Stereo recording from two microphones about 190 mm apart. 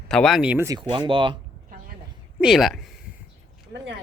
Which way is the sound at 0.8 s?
25° right (ahead or behind).